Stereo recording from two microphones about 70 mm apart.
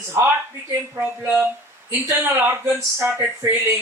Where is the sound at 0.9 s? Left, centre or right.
Right.